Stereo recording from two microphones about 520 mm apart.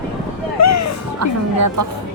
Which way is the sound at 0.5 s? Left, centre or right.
Left.